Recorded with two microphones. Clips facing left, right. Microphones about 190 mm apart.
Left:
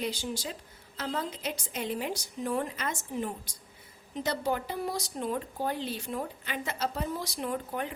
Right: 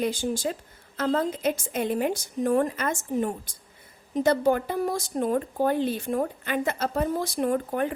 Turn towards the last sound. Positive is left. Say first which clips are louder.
# right 8 dB
turn(degrees=-50)  # may be behind; listen again after turning